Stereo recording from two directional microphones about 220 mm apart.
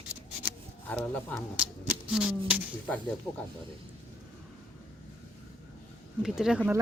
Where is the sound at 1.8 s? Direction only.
5° right (ahead or behind).